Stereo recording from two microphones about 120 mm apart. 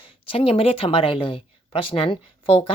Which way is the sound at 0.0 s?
50° left (ahead or behind).